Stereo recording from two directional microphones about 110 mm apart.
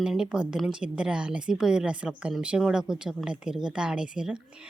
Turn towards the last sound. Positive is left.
turn(degrees=-5)  # may be behind; listen again after turning